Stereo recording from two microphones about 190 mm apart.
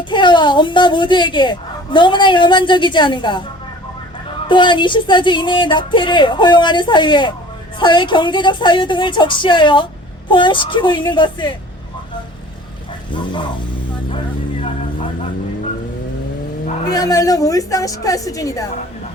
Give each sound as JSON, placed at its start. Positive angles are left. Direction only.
{"t": 0.0, "sound": "a woman's voice", "side_deg": 25}
{"t": 4.4, "sound": "a woman's voice", "side_deg": 25}
{"t": 13.1, "sound": "a sound", "side_deg": 25}
{"t": 16.9, "sound": "a woman's voice", "side_deg": 20}